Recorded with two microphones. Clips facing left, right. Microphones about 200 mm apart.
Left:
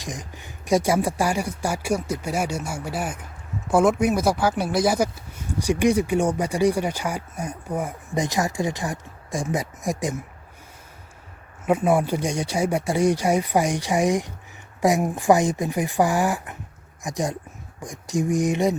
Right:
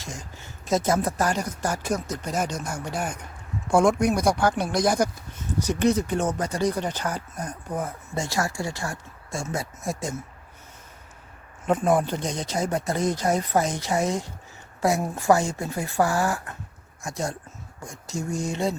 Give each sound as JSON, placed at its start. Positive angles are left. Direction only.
{"t": 0.0, "sound": "speech", "side_deg": 15}
{"t": 11.6, "sound": "speech", "side_deg": 10}